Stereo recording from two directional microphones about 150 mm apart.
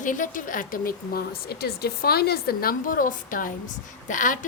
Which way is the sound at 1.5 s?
90° left.